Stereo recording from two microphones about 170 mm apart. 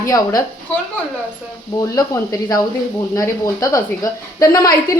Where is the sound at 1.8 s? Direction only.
20° left (ahead or behind).